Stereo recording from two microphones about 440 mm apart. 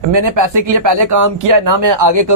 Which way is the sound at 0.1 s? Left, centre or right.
Right.